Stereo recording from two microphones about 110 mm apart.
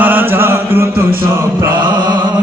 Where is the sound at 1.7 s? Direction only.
40° right (ahead or behind).